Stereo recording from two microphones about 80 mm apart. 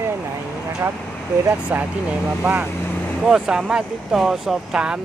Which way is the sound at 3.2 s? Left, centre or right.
Centre.